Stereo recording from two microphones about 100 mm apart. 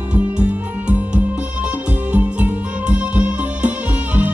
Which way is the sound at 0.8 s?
15° right (ahead or behind).